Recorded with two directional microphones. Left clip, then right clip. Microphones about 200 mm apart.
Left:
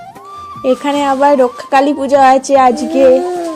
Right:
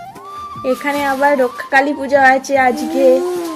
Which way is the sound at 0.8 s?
25° left (ahead or behind).